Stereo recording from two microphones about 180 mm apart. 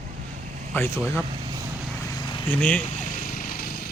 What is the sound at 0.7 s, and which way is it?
Speech, 15° left (ahead or behind).